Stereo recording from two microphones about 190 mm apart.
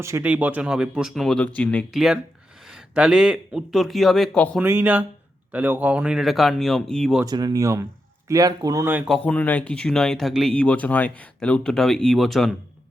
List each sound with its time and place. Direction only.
0.0 s speech: 10° right (ahead or behind); by 4.6 s 5° left (ahead or behind)
4.6 s speech: 10° right (ahead or behind)
7.3 s speech: 20° right (ahead or behind)
9.1 s speech: 10° left (ahead or behind)